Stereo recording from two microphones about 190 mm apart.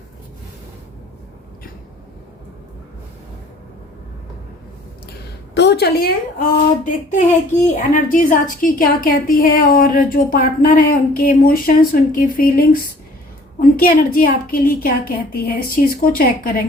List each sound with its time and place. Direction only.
5.5 s a woman's voice: 60° left (ahead or behind)
13.6 s a woman's voice: 50° left (ahead or behind)